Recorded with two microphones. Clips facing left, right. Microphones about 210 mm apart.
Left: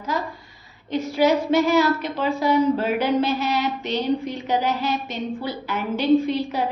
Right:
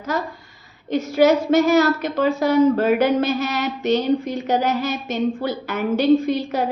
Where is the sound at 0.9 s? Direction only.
45° right (ahead or behind).